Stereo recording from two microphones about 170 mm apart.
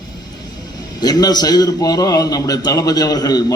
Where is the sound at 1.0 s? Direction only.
25° left (ahead or behind).